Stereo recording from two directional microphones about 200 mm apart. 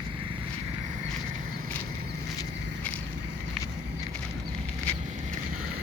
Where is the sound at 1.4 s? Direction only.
45° right (ahead or behind).